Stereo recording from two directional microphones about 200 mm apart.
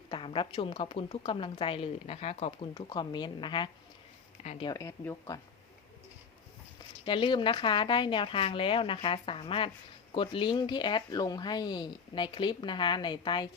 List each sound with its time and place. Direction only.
0.1 s a woman's voice: 25° left (ahead or behind)
7.0 s a woman's voice: 25° left (ahead or behind)